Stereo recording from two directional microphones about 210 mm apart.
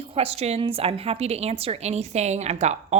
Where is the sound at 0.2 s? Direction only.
30° right (ahead or behind).